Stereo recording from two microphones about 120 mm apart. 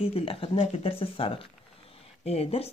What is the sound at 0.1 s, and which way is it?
Speech, 50° left (ahead or behind).